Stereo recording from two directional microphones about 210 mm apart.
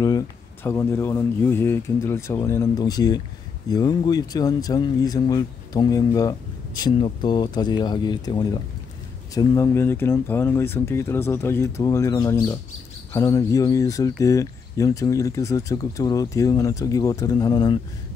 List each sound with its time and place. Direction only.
0.7 s speech: 10° left (ahead or behind)